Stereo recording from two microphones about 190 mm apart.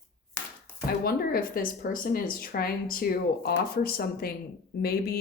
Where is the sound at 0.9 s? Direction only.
50° left (ahead or behind).